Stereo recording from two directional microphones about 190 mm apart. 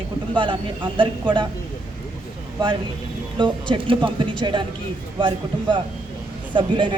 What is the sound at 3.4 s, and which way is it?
Speech, 25° right (ahead or behind).